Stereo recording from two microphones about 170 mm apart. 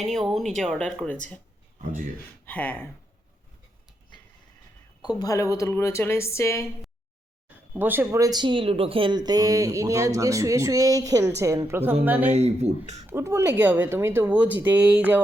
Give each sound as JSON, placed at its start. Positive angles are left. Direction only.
{"t": 0.0, "sound": "speech", "side_deg": 0}
{"t": 2.5, "sound": "speech", "side_deg": 10}
{"t": 5.2, "sound": "speech", "side_deg": 20}
{"t": 7.7, "sound": "speech", "side_deg": -10}
{"t": 12.3, "sound": "speech", "side_deg": -40}
{"t": 13.1, "sound": "speech", "side_deg": -15}